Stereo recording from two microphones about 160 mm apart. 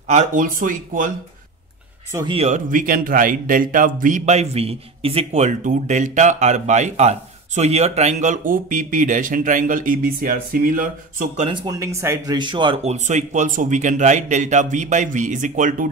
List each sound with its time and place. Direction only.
0.1 s speech: 50° right (ahead or behind)
2.2 s speech: 40° right (ahead or behind); by 11.2 s 60° right (ahead or behind)
11.3 s speech: 35° right (ahead or behind)
11.6 s speech: 20° right (ahead or behind)
12.4 s speech: 30° right (ahead or behind); by 15.9 s 55° right (ahead or behind)